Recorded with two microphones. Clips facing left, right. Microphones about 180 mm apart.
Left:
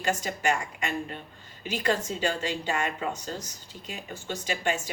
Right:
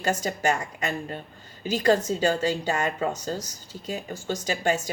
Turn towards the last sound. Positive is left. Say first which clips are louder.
# right 4 dB
turn(degrees=-40)  # may be behind; listen again after turning